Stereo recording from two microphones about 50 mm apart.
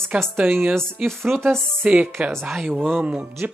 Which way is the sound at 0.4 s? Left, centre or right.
Right.